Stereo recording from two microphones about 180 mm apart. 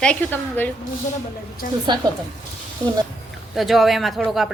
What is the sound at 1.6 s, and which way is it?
Speech, 50° left (ahead or behind).